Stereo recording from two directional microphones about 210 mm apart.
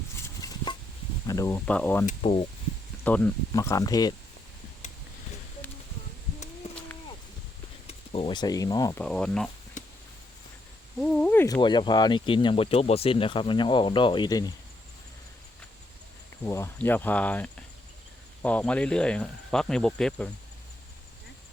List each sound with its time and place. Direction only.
0.4 s a sound: 20° left (ahead or behind)
1.3 s speech: 15° left (ahead or behind)
7.9 s speech: 25° left (ahead or behind)
9.0 s speech: 5° left (ahead or behind)
9.8 s a sound: 35° left (ahead or behind)
11.0 s speech: 5° left (ahead or behind)
16.4 s speech: 10° left (ahead or behind)